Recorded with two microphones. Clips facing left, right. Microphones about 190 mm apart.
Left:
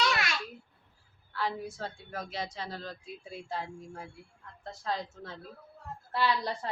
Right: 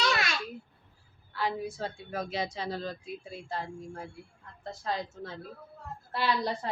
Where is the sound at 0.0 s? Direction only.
30° right (ahead or behind).